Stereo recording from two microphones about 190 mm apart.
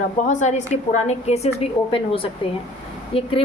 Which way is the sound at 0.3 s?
40° left (ahead or behind).